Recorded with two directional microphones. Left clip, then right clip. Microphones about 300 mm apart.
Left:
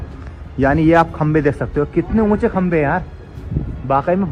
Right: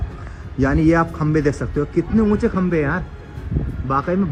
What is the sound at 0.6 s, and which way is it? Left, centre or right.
A man's voice, left.